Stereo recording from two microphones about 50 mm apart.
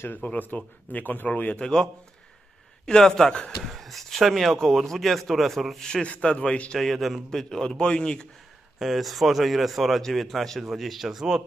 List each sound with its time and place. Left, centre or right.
0.2 s a man's voice: left
1.6 s speech: centre
2.9 s speech: centre
3.6 s speech: centre
6.2 s a man's voice: centre
6.8 s speech: centre
8.7 s speech: centre